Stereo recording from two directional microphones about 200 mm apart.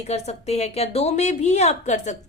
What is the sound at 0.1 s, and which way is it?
A woman's voice, 35° left (ahead or behind).